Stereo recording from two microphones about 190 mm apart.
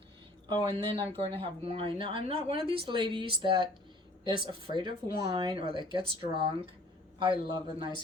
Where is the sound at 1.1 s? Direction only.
30° right (ahead or behind).